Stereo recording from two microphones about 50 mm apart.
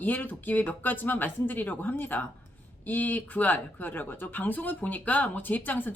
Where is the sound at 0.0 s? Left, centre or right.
Left.